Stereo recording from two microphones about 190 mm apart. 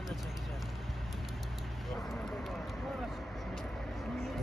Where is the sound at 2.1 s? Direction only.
5° left (ahead or behind).